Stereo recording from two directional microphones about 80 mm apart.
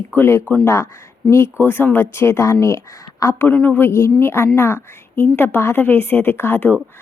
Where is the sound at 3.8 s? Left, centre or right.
Left.